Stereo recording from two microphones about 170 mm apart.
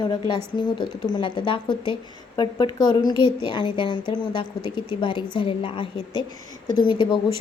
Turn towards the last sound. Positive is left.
turn(degrees=25)  # may be behind; listen again after turning